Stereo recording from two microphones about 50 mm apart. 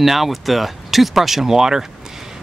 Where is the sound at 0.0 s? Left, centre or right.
Centre.